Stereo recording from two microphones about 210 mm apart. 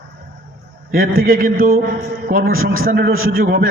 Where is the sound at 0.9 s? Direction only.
45° right (ahead or behind).